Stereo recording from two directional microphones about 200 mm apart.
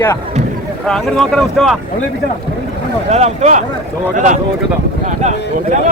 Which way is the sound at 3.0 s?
35° right (ahead or behind).